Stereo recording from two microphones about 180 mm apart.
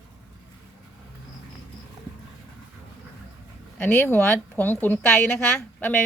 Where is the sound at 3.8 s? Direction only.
10° left (ahead or behind).